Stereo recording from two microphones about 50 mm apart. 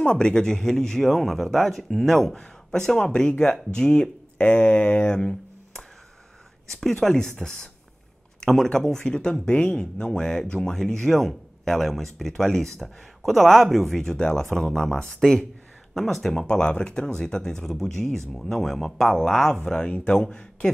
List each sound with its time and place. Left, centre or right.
0.0 s speech: centre
6.8 s speech: centre
8.4 s a sound: centre
8.6 s speech: centre
19.5 s speech: centre